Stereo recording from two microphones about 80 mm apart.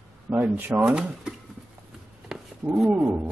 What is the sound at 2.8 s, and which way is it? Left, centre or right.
Speech, right.